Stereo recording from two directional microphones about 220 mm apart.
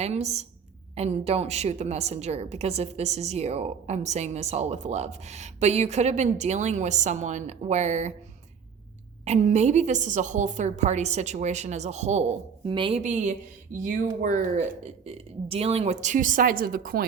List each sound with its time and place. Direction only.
0.0 s a woman's voice: 30° right (ahead or behind)
9.2 s a woman's voice: 30° right (ahead or behind)